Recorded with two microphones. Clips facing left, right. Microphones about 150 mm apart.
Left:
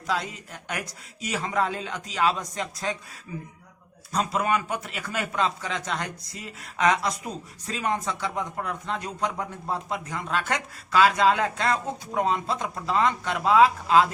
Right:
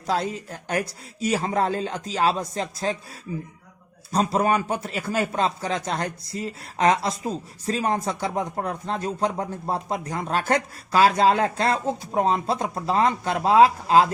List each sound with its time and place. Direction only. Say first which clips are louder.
0.7 s speech: right 8 dB; 35° right (ahead or behind)
4.1 s speech: right 4 dB; 35° right (ahead or behind)